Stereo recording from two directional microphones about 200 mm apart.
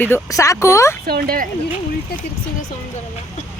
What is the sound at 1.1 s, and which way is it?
Speech, 50° right (ahead or behind).